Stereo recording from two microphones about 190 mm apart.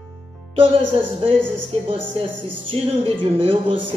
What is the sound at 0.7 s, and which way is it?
Speech, 30° right (ahead or behind).